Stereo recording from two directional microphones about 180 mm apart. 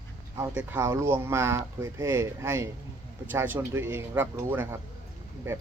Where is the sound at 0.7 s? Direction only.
15° right (ahead or behind).